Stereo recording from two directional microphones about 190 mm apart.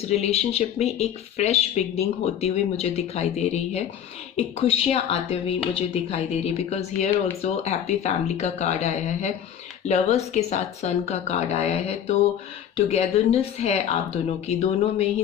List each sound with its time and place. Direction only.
0.0 s speech: 35° left (ahead or behind)